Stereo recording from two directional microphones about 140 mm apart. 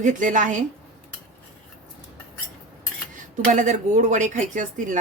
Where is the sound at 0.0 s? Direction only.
65° right (ahead or behind).